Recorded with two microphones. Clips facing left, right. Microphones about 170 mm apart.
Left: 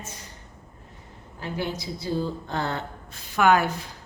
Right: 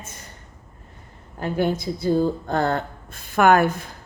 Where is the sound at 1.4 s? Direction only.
50° right (ahead or behind).